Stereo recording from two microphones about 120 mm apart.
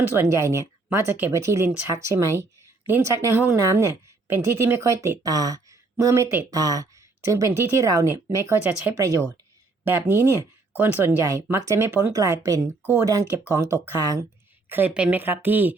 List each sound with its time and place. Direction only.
0.1 s speech: 20° right (ahead or behind)
9.8 s speech: 15° right (ahead or behind)
14.7 s speech: 15° right (ahead or behind)